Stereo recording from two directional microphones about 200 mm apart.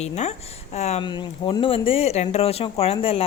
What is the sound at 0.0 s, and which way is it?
A woman's voice, 35° left (ahead or behind).